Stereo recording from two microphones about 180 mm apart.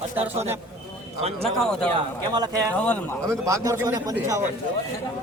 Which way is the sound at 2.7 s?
10° left (ahead or behind).